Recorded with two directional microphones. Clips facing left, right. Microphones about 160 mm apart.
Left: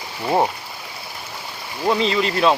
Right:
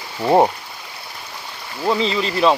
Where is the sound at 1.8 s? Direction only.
Centre (ahead or behind).